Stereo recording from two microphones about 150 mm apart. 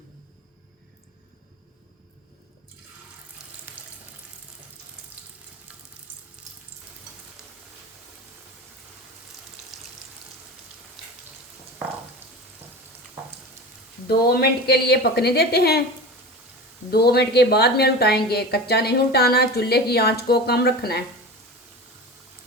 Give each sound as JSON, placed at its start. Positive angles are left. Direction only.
{"t": 3.7, "sound": "water tap", "side_deg": -15}
{"t": 6.4, "sound": "frying", "side_deg": -5}
{"t": 14.1, "sound": "a woman's voice", "side_deg": 90}
{"t": 16.9, "sound": "a woman's voice", "side_deg": 90}